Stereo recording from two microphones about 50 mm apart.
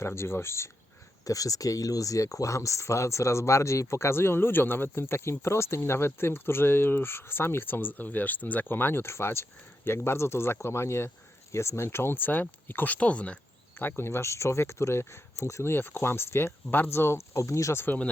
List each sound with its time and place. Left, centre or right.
0.0 s speech: left
2.1 s speech: left
12.1 s speech: left
13.8 s speech: left
15.7 s speech: left